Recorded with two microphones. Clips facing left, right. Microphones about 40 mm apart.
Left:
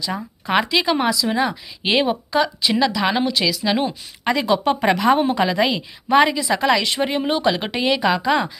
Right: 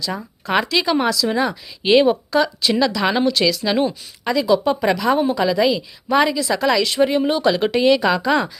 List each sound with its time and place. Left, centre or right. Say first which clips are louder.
0.0 s speech: even; centre
4.2 s speech: right 2 dB; left
5.4 s speech: right 2 dB; left